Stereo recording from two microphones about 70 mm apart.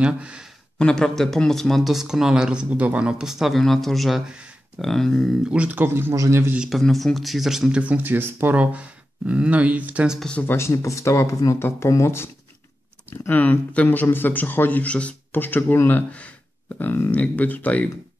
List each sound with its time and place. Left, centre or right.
0.0 s speech: centre
0.7 s speech: centre
5.4 s speech: centre
6.1 s a man's voice: right
6.7 s speech: centre
7.8 s speech: right
10.4 s speech: left
13.3 s speech: left
16.1 s speech: centre
16.7 s speech: left